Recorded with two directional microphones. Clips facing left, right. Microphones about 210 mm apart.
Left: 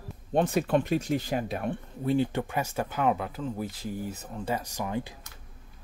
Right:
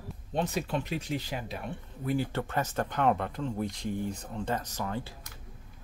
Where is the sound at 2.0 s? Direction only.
25° left (ahead or behind).